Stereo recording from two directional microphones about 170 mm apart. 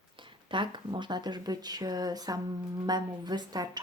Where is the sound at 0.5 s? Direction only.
30° right (ahead or behind).